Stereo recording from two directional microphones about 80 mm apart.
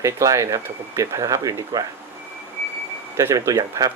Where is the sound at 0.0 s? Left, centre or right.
Right.